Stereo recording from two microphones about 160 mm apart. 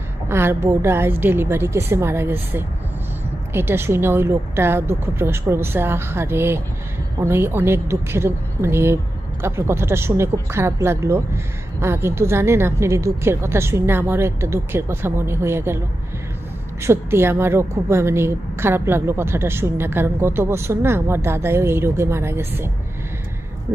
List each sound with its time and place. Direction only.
0.3 s speech: 15° right (ahead or behind)
16.8 s speech: 15° right (ahead or behind)